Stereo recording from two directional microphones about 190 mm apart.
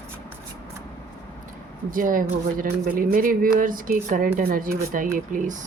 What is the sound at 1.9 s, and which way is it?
Speech, 45° right (ahead or behind).